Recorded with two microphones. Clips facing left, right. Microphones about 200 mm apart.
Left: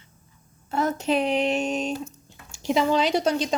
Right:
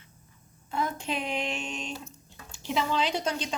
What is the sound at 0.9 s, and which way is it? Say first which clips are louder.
Speech: left 9 dB; 40° left (ahead or behind).